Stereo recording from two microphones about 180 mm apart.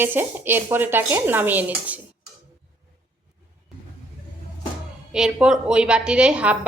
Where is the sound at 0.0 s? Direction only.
10° right (ahead or behind).